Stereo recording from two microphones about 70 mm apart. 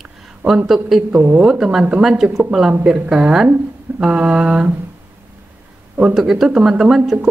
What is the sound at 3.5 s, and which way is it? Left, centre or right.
Speech, right.